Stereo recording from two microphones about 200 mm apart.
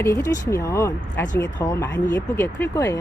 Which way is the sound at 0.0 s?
15° left (ahead or behind).